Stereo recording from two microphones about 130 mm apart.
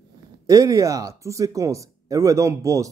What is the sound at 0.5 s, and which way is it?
Speech, 25° right (ahead or behind).